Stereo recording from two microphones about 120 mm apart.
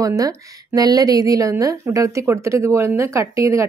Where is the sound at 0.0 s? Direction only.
30° right (ahead or behind).